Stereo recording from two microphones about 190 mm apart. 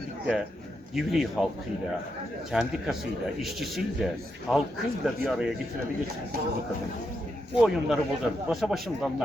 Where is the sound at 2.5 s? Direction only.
5° right (ahead or behind).